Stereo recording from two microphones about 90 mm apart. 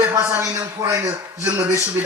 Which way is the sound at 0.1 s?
30° right (ahead or behind).